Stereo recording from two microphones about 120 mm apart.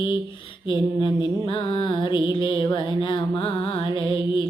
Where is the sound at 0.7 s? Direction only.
45° left (ahead or behind).